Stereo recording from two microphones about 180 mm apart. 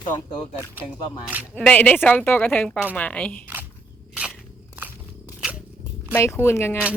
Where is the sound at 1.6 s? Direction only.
5° left (ahead or behind).